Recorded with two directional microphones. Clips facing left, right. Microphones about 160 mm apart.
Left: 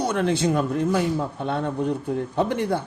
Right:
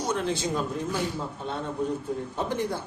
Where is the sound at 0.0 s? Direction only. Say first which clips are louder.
Left 6 dB; 65° left (ahead or behind).